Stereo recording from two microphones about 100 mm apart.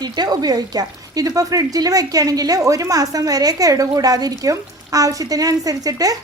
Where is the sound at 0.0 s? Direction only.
40° right (ahead or behind).